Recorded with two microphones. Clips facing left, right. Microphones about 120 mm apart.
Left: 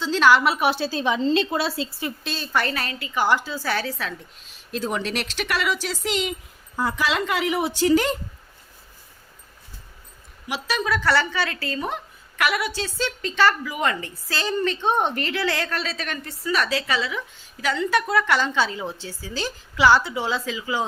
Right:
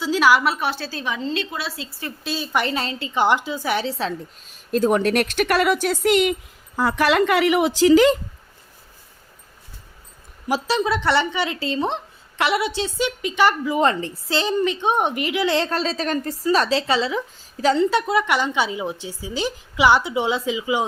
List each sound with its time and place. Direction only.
0.0 s a sound: 10° right (ahead or behind)
0.6 s a woman's voice: 15° left (ahead or behind); by 1.9 s 35° left (ahead or behind)
2.2 s a woman's voice: 10° right (ahead or behind); by 4.1 s 25° right (ahead or behind)
4.4 s speech: 45° right (ahead or behind)
6.7 s a woman's voice: 70° right (ahead or behind); by 8.1 s 90° right
10.7 s a woman's voice: 25° right (ahead or behind)
13.7 s a woman's voice: 30° right (ahead or behind)